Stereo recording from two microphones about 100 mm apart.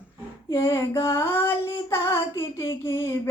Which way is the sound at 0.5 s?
25° left (ahead or behind).